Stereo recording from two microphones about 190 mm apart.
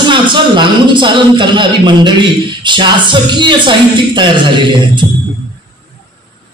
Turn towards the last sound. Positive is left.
turn(degrees=-25)  # may be behind; listen again after turning